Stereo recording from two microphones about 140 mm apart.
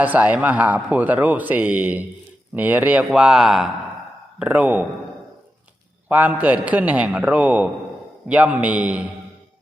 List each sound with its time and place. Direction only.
0.0 s a man's voice: 10° right (ahead or behind)
6.1 s a man's voice: 10° right (ahead or behind)